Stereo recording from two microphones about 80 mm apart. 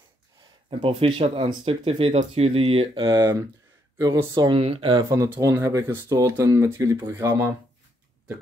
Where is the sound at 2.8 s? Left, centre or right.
Right.